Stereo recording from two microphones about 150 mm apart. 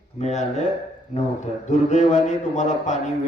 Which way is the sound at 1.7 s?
50° left (ahead or behind).